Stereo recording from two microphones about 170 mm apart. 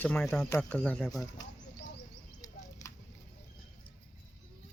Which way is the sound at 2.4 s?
20° left (ahead or behind).